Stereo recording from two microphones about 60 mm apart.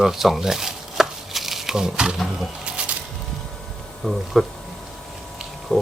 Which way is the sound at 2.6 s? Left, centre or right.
Centre.